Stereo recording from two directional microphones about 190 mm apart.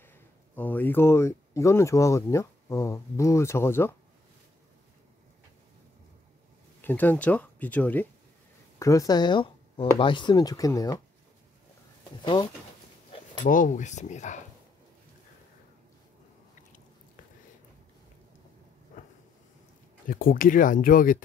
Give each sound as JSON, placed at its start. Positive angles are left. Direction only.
{"t": 0.0, "sound": "speech", "side_deg": 10}
{"t": 6.8, "sound": "speech", "side_deg": 10}
{"t": 12.2, "sound": "speech", "side_deg": 25}
{"t": 13.1, "sound": "a sound", "side_deg": 25}
{"t": 13.5, "sound": "speech", "side_deg": 45}
{"t": 20.1, "sound": "speech", "side_deg": 50}